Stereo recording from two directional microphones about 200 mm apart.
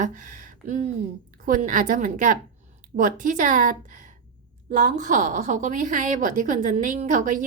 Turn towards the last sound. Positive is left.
turn(degrees=-40)  # may be behind; listen again after turning